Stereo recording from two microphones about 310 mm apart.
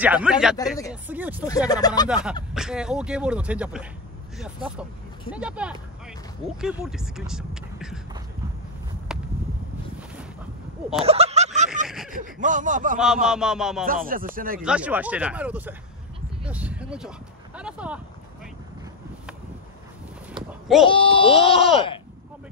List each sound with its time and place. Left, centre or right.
0.0 s speech: centre
1.7 s speech: centre
2.0 s speech: centre
9.1 s a sound: centre
11.1 s a sound: centre
11.9 s a sound: centre
12.2 s speech: right
13.0 s speech: centre
13.8 s speech: right
14.6 s speech: centre
16.4 s a sound: centre
17.6 s speech: centre
20.8 s speech: centre